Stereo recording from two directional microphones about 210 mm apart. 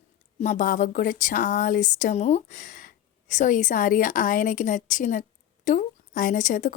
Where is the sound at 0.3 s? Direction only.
35° left (ahead or behind).